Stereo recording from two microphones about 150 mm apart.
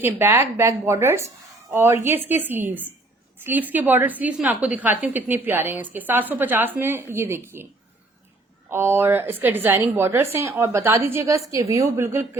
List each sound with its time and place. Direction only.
0.0 s a woman's voice: 15° right (ahead or behind)
8.7 s a woman's voice: 15° right (ahead or behind)